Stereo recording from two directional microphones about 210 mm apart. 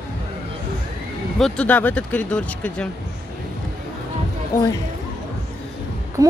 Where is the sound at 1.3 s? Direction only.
5° left (ahead or behind).